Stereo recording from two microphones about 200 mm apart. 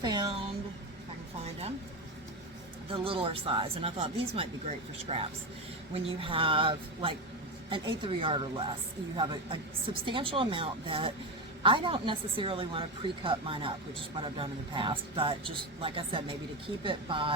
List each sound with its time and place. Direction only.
0.0 s a woman's voice: 20° right (ahead or behind)
2.9 s a woman's voice: 25° right (ahead or behind)